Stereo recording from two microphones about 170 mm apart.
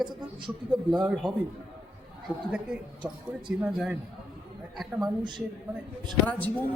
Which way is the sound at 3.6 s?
10° right (ahead or behind).